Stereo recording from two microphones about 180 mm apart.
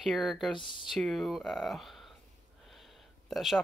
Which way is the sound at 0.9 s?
Centre (ahead or behind).